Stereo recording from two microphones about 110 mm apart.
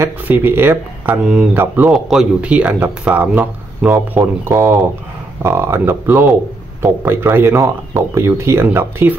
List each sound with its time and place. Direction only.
0.0 s speech: 20° right (ahead or behind)
1.9 s speech: 5° right (ahead or behind)